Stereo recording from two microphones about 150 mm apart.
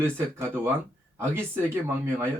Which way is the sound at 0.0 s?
15° right (ahead or behind).